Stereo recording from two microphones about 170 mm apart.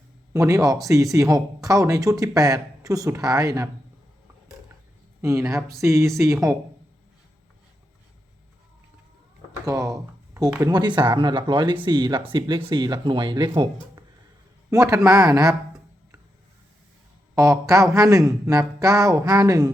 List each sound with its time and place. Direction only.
0.3 s speech: 20° right (ahead or behind)
5.2 s speech: 20° right (ahead or behind)
9.6 s speech: 20° right (ahead or behind)
14.7 s a man's voice: 20° right (ahead or behind)
17.3 s speech: 20° right (ahead or behind)